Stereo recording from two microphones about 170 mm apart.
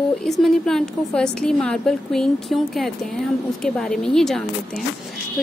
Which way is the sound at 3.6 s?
5° left (ahead or behind).